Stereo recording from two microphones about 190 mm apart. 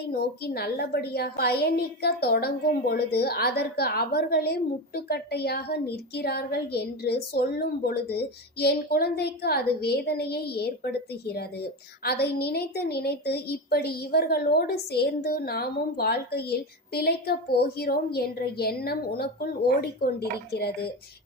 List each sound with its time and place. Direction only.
0.1 s a woman's voice: 55° left (ahead or behind)